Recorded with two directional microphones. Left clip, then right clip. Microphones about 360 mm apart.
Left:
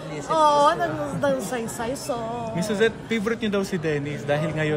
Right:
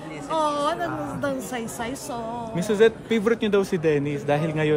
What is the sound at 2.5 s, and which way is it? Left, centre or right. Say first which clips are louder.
A man's voice: right 4 dB; right.